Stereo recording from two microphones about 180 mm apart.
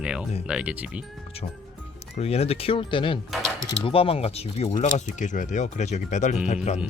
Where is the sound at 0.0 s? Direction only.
5° right (ahead or behind).